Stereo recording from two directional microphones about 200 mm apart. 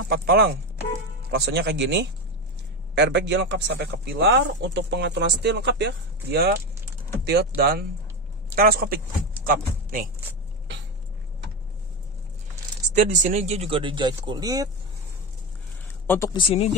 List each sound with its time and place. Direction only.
0.1 s a man's voice: 50° right (ahead or behind)
12.9 s speech: 40° right (ahead or behind); by 14.7 s 20° right (ahead or behind)
16.3 s speech: 30° left (ahead or behind)